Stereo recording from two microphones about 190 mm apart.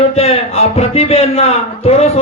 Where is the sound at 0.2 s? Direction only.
35° left (ahead or behind).